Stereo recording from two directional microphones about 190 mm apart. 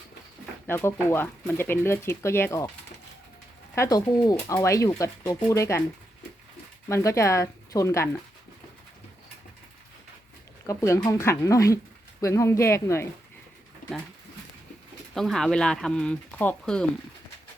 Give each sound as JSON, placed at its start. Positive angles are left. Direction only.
{"t": 0.7, "sound": "speech", "side_deg": 10}
{"t": 3.8, "sound": "speech", "side_deg": 20}
{"t": 6.8, "sound": "speech", "side_deg": 15}
{"t": 10.7, "sound": "speech", "side_deg": 15}
{"t": 15.1, "sound": "speech", "side_deg": 0}